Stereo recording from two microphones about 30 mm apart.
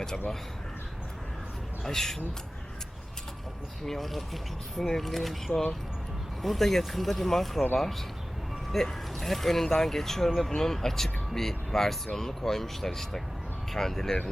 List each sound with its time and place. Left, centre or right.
0.0 s speech: centre
1.9 s speech: centre
3.8 s speech: centre
6.4 s speech: centre